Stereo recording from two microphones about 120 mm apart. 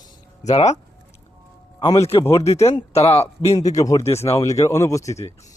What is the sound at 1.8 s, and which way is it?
Speech, 30° left (ahead or behind).